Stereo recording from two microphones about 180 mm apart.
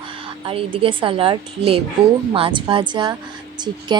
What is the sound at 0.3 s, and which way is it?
Speech, 30° right (ahead or behind).